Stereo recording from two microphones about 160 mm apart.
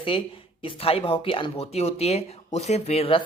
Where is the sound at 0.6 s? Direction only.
35° left (ahead or behind).